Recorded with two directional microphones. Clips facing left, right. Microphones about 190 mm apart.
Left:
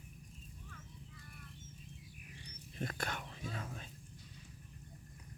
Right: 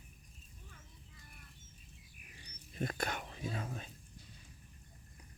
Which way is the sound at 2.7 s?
15° right (ahead or behind).